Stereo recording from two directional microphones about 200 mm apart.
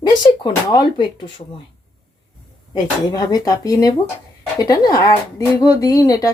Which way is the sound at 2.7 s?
20° left (ahead or behind).